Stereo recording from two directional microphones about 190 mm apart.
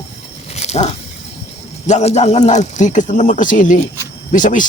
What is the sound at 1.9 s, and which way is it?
Speech, 35° left (ahead or behind).